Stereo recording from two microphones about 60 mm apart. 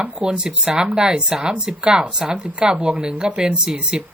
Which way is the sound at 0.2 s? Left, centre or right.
Centre.